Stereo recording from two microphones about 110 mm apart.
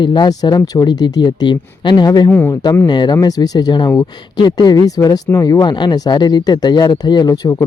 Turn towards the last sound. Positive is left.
turn(degrees=35)  # may be behind; listen again after turning